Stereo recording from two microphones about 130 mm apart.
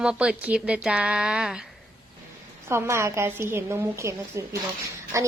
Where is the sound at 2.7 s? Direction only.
20° right (ahead or behind).